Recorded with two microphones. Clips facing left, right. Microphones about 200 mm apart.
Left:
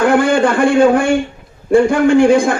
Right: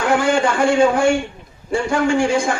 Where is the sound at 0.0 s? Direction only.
55° left (ahead or behind).